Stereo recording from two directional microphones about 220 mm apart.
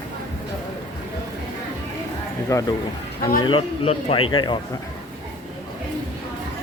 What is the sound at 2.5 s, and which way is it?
Speech, 15° left (ahead or behind).